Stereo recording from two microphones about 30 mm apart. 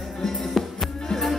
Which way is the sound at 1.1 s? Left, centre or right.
Centre.